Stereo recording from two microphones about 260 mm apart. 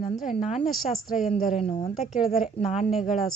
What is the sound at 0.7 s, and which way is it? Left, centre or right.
Speech, centre.